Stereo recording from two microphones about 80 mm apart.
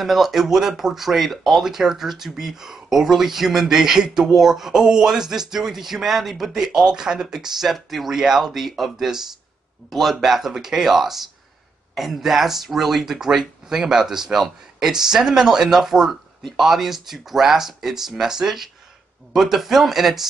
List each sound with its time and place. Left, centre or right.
0.0 s speech: centre